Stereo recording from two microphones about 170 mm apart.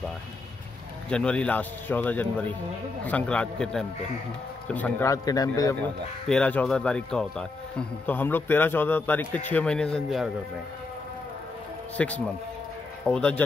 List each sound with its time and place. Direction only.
1.1 s a man's voice: 5° left (ahead or behind)
5.8 s a man's voice: 5° left (ahead or behind)
12.0 s a man's voice: 5° left (ahead or behind)